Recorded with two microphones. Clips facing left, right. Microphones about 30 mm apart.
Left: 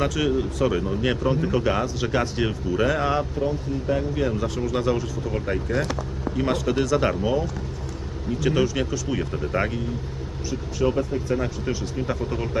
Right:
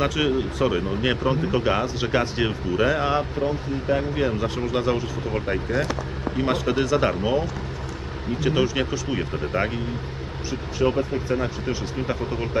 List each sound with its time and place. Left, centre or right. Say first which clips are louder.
0.0 s speech: right 1 dB; right
8.6 s speech: right 1 dB; right
10.5 s speech: right 1 dB; right